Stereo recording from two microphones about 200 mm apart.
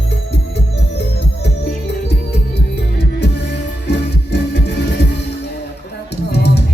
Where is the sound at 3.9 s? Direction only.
55° left (ahead or behind).